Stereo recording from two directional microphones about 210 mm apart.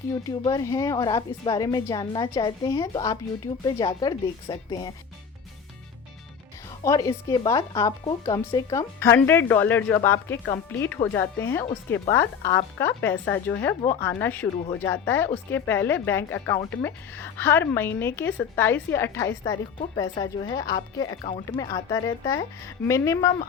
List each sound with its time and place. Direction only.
0.1 s speech: 15° left (ahead or behind)
6.8 s speech: 15° left (ahead or behind)